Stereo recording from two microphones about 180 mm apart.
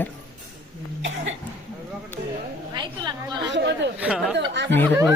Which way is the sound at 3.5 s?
85° right.